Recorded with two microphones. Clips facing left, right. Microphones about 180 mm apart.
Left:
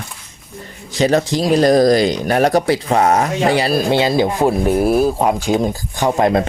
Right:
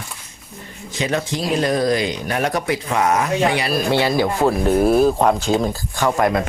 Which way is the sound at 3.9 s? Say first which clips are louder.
Left 3 dB; 20° left (ahead or behind).